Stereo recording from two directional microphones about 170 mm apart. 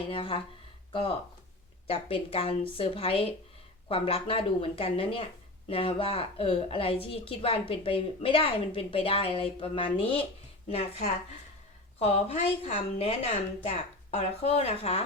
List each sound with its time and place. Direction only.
0.1 s speech: 30° left (ahead or behind)
1.9 s speech: 35° left (ahead or behind)